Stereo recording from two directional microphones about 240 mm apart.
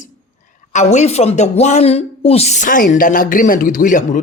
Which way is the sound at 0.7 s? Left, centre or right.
Left.